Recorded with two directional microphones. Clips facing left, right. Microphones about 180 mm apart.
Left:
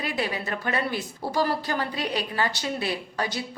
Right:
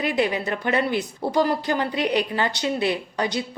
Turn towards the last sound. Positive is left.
turn(degrees=-20)  # may be behind; listen again after turning